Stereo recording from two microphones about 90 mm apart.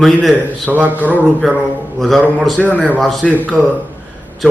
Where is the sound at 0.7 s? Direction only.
20° right (ahead or behind).